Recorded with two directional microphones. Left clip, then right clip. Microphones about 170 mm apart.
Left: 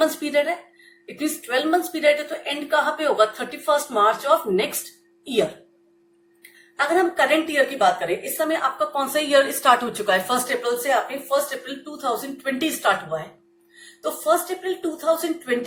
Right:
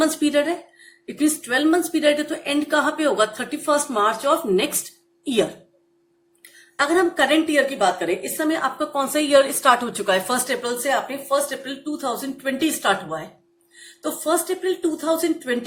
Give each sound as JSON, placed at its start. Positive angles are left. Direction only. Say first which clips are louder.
{"t": 0.0, "sound": "a woman's voice", "louder": "right 1 dB", "side_deg": -35}
{"t": 6.7, "sound": "a woman's voice", "louder": "right 1 dB", "side_deg": -30}